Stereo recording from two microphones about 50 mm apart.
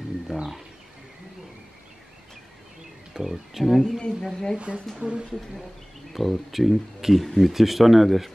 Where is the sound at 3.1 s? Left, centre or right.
Centre.